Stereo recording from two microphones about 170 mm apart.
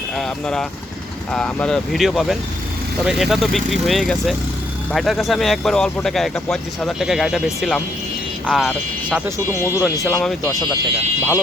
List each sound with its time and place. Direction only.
0.2 s speech: 5° left (ahead or behind)
9.5 s speech: 15° right (ahead or behind)
10.1 s speech: 5° left (ahead or behind)